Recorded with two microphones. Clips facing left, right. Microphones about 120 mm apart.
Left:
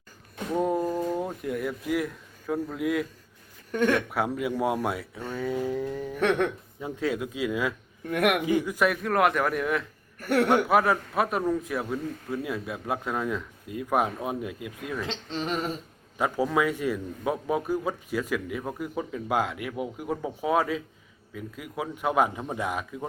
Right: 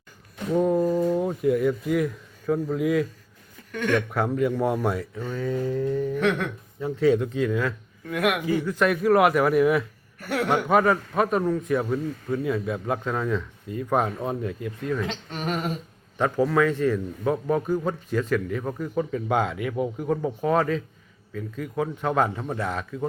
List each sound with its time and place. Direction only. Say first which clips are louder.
0.5 s speech: right 5 dB; 5° left (ahead or behind)
3.7 s speech: left 3 dB; 40° left (ahead or behind)
4.4 s a man's voice: right 6 dB; 5° left (ahead or behind)
6.7 s a man's voice: right 10 dB; 15° left (ahead or behind)
8.1 s a man's voice: even; 55° left (ahead or behind)
8.4 s a man's voice: right 1 dB; 15° left (ahead or behind)
8.9 s a man's voice: right 8 dB; 5° right (ahead or behind)
15.0 s speech: right 2 dB; 25° left (ahead or behind)
16.1 s a man's voice: right 3 dB; 10° left (ahead or behind)